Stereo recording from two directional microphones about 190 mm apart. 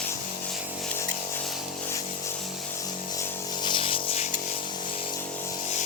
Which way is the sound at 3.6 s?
25° left (ahead or behind).